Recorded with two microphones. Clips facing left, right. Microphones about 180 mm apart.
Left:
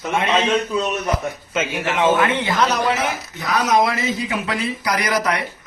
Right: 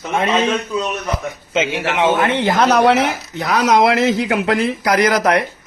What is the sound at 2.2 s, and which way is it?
Speech, 50° right (ahead or behind).